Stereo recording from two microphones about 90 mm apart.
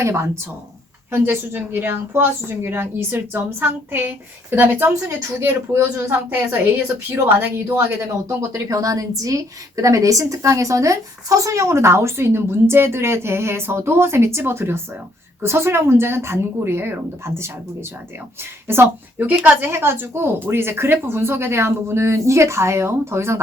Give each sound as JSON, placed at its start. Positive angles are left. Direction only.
{"t": 0.0, "sound": "speech", "side_deg": -30}
{"t": 18.7, "sound": "speech", "side_deg": -20}